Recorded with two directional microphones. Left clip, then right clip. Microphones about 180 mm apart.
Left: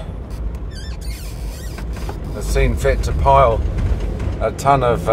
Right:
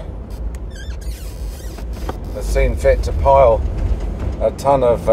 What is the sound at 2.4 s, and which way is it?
Speech, 10° left (ahead or behind).